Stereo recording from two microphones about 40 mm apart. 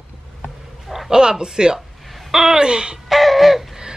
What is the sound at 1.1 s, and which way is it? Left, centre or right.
Speech, centre.